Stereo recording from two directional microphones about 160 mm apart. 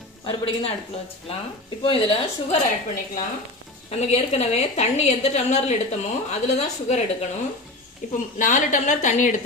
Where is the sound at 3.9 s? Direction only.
45° left (ahead or behind).